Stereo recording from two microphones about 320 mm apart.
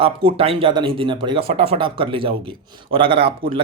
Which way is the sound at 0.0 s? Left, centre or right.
Centre.